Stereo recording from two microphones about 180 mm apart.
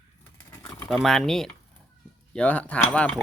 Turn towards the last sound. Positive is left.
turn(degrees=5)  # may be behind; listen again after turning